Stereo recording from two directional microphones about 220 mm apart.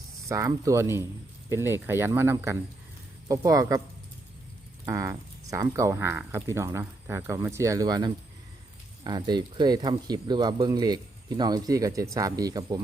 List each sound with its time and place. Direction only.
0.3 s speech: 15° right (ahead or behind)
4.9 s speech: 15° right (ahead or behind)